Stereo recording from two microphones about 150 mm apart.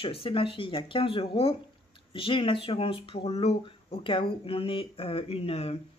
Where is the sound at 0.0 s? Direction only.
35° left (ahead or behind).